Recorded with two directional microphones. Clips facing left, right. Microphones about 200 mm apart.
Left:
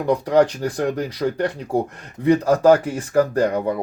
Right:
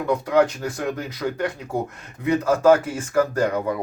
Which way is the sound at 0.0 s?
35° left (ahead or behind).